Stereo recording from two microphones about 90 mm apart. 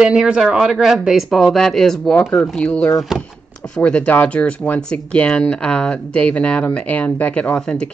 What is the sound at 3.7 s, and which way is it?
Speech, 15° left (ahead or behind).